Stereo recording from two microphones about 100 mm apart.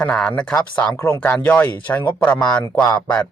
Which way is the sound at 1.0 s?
30° left (ahead or behind).